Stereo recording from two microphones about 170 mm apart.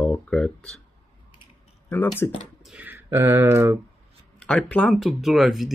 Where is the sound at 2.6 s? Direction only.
10° right (ahead or behind).